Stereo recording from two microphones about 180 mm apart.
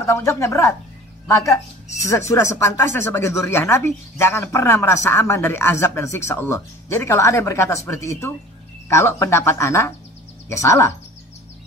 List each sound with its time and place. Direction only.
0.0 s speech: 15° left (ahead or behind)